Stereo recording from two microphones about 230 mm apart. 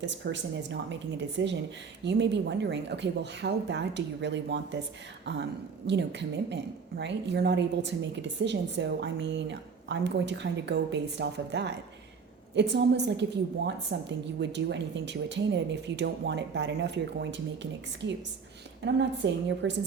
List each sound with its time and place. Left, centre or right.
0.0 s a woman's voice: right